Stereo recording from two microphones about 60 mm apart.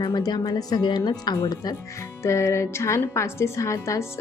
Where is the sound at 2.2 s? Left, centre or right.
Left.